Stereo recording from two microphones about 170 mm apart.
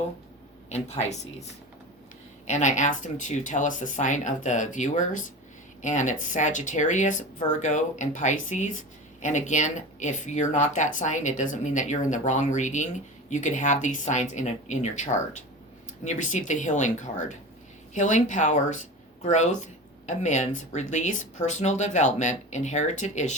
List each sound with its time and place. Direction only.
0.7 s speech: 40° left (ahead or behind)
2.5 s speech: 45° left (ahead or behind)